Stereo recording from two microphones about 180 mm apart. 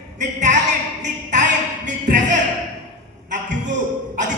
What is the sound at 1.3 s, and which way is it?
Music, 45° right (ahead or behind).